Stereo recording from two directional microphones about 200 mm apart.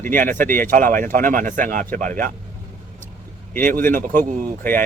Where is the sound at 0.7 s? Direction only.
45° right (ahead or behind).